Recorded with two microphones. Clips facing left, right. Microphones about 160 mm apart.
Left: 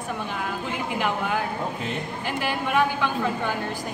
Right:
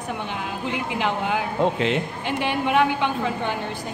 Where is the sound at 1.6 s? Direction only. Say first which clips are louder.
Right 8 dB; 90° right.